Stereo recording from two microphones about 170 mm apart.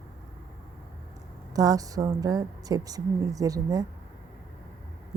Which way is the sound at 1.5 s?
20° right (ahead or behind).